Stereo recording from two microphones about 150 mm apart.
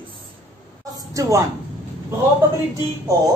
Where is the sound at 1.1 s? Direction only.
20° right (ahead or behind).